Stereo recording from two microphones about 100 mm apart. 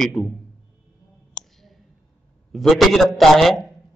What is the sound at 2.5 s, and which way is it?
Speech, centre (ahead or behind).